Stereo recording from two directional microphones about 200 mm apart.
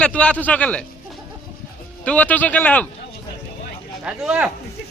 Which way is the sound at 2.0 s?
5° left (ahead or behind).